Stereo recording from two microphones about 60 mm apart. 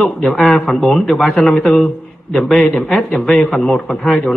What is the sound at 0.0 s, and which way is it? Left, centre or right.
A man's voice, centre.